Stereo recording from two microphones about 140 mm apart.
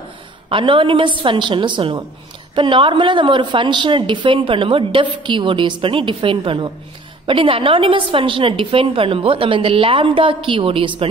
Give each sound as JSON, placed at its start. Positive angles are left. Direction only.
{"t": 0.5, "sound": "a woman's voice", "side_deg": -40}